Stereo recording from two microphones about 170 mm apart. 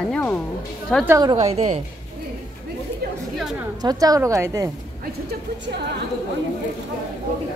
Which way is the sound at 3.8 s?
20° right (ahead or behind).